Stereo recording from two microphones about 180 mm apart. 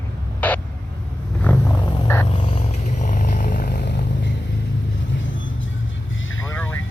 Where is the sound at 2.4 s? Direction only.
35° left (ahead or behind); by 4.3 s 70° left (ahead or behind).